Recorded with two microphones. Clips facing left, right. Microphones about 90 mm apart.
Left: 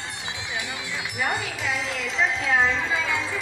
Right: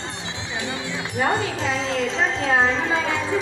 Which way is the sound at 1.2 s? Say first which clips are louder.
Right 6 dB; 30° right (ahead or behind).